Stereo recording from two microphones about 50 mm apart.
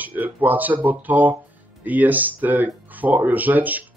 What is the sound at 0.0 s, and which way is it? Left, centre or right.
Speech, right.